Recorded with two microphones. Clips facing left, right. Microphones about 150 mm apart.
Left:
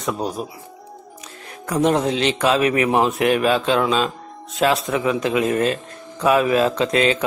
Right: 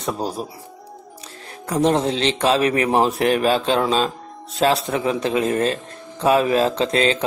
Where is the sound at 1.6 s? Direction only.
30° right (ahead or behind).